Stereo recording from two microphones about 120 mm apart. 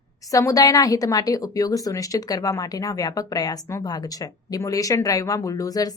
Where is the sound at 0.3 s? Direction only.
30° left (ahead or behind).